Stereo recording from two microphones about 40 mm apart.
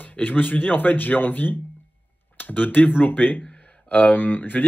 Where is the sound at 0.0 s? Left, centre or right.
Left.